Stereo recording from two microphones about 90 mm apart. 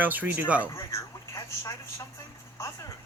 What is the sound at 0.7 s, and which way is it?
Speech, 35° left (ahead or behind).